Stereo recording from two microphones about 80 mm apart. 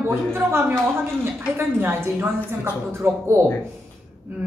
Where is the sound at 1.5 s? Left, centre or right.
Right.